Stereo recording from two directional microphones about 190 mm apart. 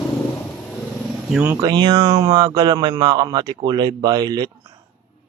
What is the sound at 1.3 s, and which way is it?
Speech, 10° right (ahead or behind).